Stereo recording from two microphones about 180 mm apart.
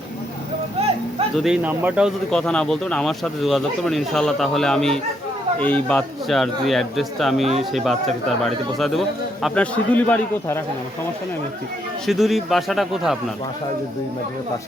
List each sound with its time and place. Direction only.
1.4 s speech: 5° right (ahead or behind)
12.0 s speech: centre (ahead or behind)